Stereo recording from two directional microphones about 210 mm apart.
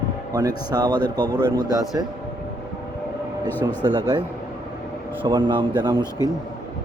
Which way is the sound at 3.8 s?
25° right (ahead or behind).